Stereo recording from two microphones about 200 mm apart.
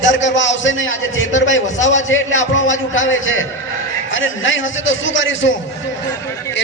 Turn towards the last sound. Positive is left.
turn(degrees=70)  # may be behind; listen again after turning